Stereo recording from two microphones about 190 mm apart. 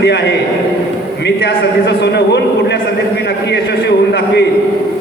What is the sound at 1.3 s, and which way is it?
A man's voice, 65° left (ahead or behind).